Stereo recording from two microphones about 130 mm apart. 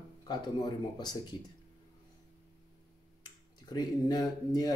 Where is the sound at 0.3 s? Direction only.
35° left (ahead or behind).